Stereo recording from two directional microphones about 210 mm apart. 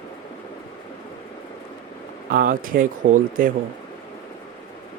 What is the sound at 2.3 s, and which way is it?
Speech, 40° right (ahead or behind).